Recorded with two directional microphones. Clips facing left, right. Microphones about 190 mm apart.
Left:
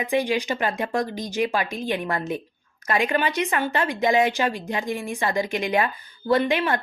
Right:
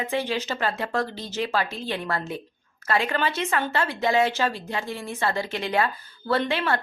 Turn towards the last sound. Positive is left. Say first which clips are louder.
# left 3 dB
turn(degrees=15)  # may be behind; listen again after turning